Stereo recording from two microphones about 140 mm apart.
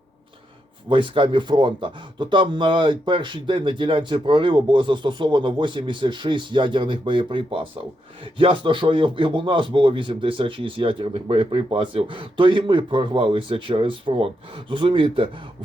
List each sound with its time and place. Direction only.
0.9 s speech: 35° right (ahead or behind)